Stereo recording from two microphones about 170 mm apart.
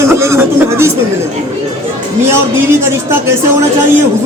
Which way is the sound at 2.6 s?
15° right (ahead or behind).